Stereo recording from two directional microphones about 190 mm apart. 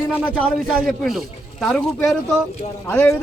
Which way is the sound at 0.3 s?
5° left (ahead or behind).